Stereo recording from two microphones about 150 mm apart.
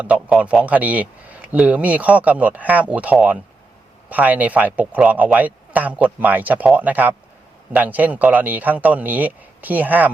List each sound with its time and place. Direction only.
0.0 s a man's voice: 10° right (ahead or behind)